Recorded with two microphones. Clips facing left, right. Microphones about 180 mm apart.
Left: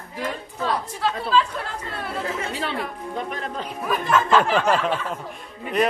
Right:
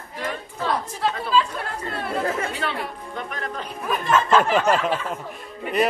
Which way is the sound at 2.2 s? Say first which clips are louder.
Right 4 dB; 50° right (ahead or behind).